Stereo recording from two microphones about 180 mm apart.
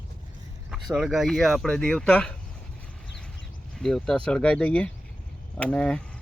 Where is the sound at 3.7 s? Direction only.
5° left (ahead or behind).